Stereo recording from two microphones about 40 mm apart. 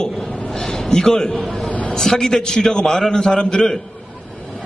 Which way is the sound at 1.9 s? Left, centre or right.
Centre.